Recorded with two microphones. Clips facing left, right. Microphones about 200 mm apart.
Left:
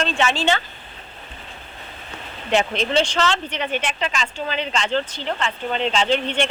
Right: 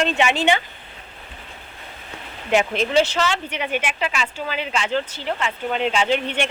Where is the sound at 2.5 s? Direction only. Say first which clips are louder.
Right 1 dB; 10° right (ahead or behind).